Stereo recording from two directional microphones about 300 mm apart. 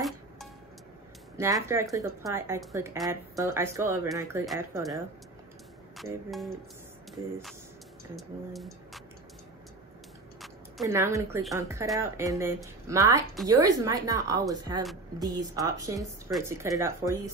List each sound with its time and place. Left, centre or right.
1.4 s speech: centre
8.2 s speech: centre
10.4 s speech: centre